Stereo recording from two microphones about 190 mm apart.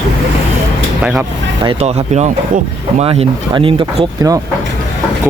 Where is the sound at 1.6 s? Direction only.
35° right (ahead or behind).